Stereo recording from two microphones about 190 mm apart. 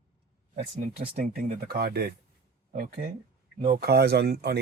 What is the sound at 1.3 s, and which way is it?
Speech, 50° right (ahead or behind).